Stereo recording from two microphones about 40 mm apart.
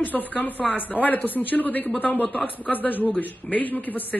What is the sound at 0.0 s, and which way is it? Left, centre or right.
Speech, left.